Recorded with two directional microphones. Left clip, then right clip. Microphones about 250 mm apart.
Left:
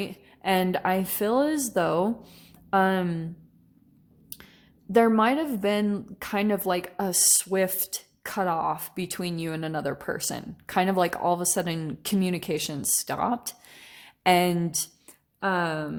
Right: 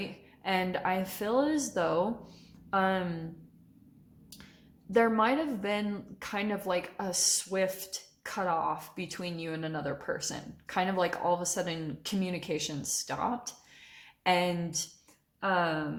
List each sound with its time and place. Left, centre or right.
0.0 s speech: left
4.9 s speech: left